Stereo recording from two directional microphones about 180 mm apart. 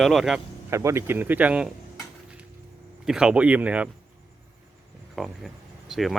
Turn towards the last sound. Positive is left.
turn(degrees=0)  # may be behind; listen again after turning